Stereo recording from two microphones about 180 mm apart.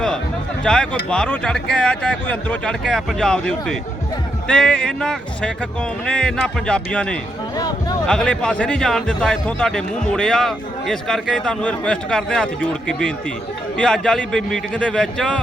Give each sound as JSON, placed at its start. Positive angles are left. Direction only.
{"t": 0.6, "sound": "a man's voice", "side_deg": 5}